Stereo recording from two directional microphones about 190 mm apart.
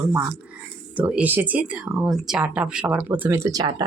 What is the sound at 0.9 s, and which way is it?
Speech, 5° right (ahead or behind).